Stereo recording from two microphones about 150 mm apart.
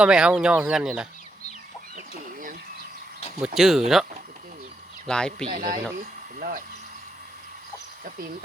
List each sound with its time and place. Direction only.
0.0 s speech: 5° right (ahead or behind)
2.0 s chicken: 65° right (ahead or behind)
3.4 s speech: centre (ahead or behind)
5.0 s speech: 5° left (ahead or behind)
5.5 s speech: 60° right (ahead or behind)